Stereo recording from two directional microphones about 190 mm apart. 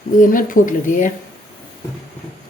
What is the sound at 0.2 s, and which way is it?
Speech, 45° left (ahead or behind).